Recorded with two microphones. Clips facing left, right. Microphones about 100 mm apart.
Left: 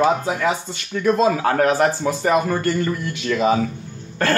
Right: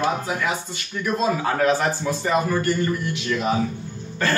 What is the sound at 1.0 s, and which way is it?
A man's voice, 90° left.